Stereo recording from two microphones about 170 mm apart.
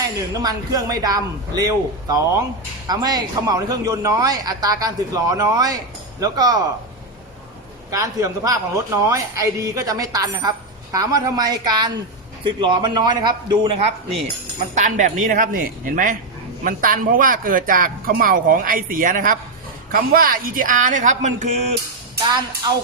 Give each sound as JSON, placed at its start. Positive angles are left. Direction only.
{"t": 0.3, "sound": "a man's voice", "side_deg": -20}
{"t": 7.9, "sound": "a man's voice", "side_deg": -20}
{"t": 14.8, "sound": "a woman's voice", "side_deg": -45}
{"t": 22.3, "sound": "a man's voice", "side_deg": -25}